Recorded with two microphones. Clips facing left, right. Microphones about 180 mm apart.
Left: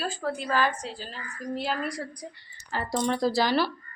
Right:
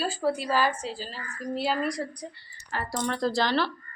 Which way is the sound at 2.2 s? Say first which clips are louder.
Right 1 dB; 10° left (ahead or behind).